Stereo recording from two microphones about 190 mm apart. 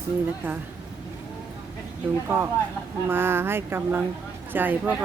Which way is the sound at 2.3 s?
10° right (ahead or behind).